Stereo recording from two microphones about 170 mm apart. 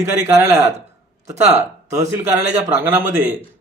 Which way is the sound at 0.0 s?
15° right (ahead or behind).